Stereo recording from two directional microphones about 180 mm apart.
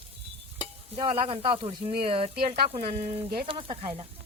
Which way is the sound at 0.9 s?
30° right (ahead or behind).